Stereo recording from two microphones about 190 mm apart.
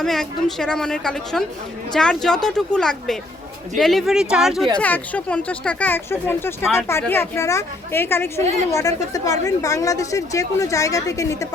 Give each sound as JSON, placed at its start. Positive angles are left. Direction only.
{"t": 0.0, "sound": "a woman's voice", "side_deg": 0}